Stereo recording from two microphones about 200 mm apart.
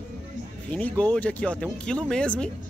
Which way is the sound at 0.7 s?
5° left (ahead or behind).